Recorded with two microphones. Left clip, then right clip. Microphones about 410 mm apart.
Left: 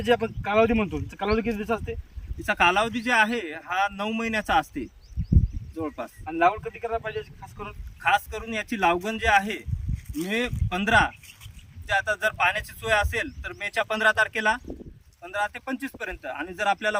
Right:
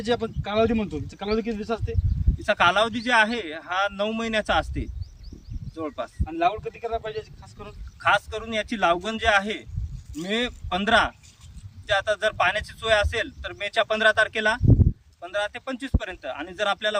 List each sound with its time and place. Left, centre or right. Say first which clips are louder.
0.0 s speech: left 3 dB; centre
2.4 s speech: right 1 dB; centre
8.0 s speech: right 1 dB; centre